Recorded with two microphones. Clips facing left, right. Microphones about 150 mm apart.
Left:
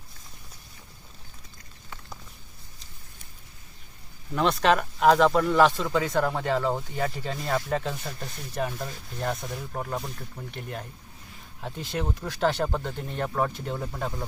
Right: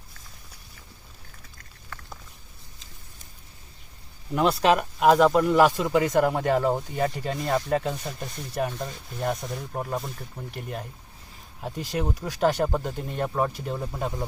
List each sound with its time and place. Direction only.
4.6 s speech: 5° right (ahead or behind)
6.9 s speech: 35° right (ahead or behind)
7.3 s speech: centre (ahead or behind)